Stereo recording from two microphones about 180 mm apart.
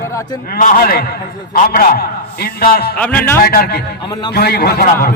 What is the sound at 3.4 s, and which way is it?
Speech, 60° left (ahead or behind).